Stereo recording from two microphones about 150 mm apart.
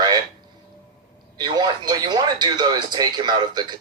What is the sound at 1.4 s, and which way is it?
Speech, 30° right (ahead or behind).